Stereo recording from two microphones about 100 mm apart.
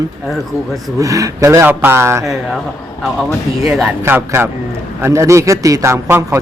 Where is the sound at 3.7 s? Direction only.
5° right (ahead or behind).